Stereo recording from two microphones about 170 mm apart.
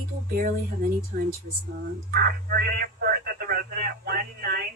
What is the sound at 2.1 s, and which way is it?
Speech, 60° right (ahead or behind).